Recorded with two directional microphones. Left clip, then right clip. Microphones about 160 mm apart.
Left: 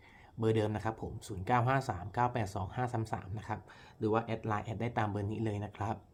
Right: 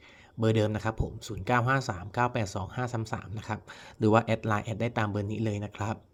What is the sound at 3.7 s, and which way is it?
Speech, 50° right (ahead or behind).